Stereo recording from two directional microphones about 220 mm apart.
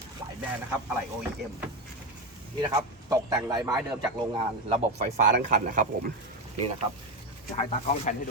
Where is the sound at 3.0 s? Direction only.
15° right (ahead or behind).